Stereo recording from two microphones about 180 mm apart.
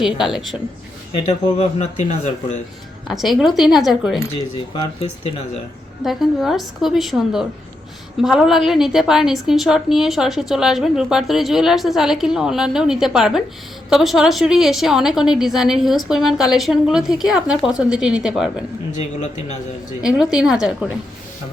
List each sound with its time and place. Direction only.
0.0 s a woman's voice: centre (ahead or behind)
1.2 s speech: 40° left (ahead or behind)
3.1 s a woman's voice: centre (ahead or behind)
4.7 s speech: 25° left (ahead or behind)
6.0 s a woman's voice: centre (ahead or behind)
18.9 s speech: 40° left (ahead or behind)
20.0 s a woman's voice: 5° right (ahead or behind)